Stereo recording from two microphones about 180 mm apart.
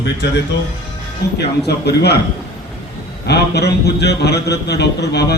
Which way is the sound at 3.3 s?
65° left (ahead or behind).